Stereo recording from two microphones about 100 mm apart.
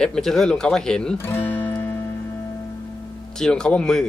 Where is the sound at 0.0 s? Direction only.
5° left (ahead or behind).